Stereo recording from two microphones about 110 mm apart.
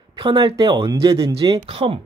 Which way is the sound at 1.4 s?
60° right (ahead or behind).